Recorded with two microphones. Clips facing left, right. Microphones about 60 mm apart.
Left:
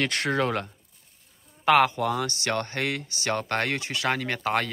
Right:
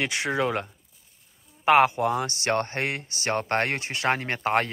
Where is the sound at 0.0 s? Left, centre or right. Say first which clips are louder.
Even; centre.